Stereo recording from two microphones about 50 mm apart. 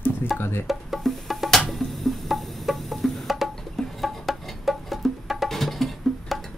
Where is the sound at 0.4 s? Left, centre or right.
Left.